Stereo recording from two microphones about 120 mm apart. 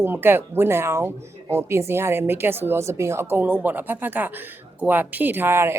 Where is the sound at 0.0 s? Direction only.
15° right (ahead or behind).